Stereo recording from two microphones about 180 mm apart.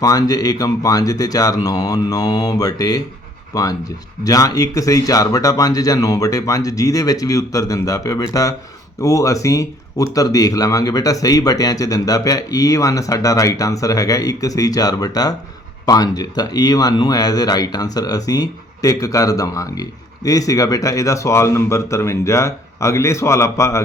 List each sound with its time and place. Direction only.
0.0 s speech: 20° left (ahead or behind)